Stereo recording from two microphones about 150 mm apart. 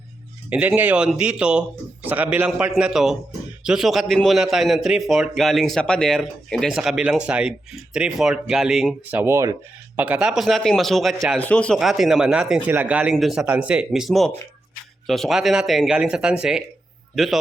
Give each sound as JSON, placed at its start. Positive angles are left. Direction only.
{"t": 0.5, "sound": "a man's voice", "side_deg": -10}
{"t": 9.0, "sound": "a man's voice", "side_deg": -15}